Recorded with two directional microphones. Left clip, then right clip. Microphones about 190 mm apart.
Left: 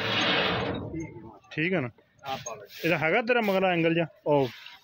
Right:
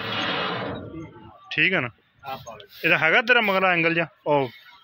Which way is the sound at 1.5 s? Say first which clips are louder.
Right 7 dB; 15° left (ahead or behind).